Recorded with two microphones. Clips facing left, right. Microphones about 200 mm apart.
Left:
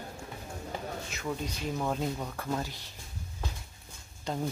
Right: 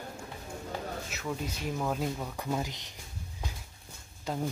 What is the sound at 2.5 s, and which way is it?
Speech, 15° right (ahead or behind).